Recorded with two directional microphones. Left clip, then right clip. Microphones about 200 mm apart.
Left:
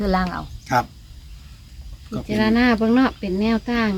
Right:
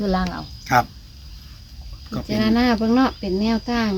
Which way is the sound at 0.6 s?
15° right (ahead or behind).